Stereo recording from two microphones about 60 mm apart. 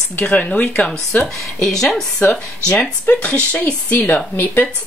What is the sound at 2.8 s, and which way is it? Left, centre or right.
Speech, left.